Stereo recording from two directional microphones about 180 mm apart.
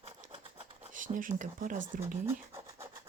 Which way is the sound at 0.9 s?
45° right (ahead or behind).